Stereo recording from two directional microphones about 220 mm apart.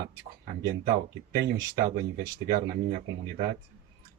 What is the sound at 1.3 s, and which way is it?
Speech, 50° right (ahead or behind).